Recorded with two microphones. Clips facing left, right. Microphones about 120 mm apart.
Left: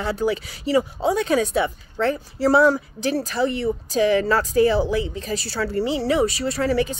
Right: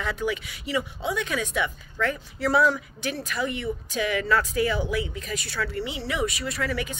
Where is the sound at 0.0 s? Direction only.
35° left (ahead or behind).